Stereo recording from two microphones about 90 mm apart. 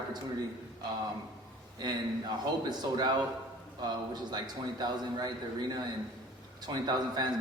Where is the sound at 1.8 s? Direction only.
50° right (ahead or behind).